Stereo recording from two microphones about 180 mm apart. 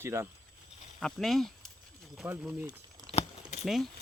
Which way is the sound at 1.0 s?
Centre (ahead or behind).